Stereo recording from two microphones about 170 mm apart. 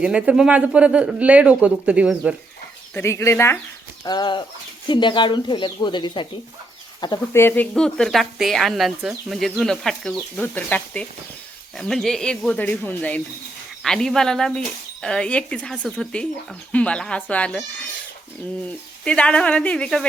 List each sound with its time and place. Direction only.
0.0 s speech: 5° right (ahead or behind)
2.9 s speech: 15° left (ahead or behind)
4.0 s speech: 25° left (ahead or behind)
7.4 s speech: 10° left (ahead or behind)
19.0 s speech: 5° left (ahead or behind)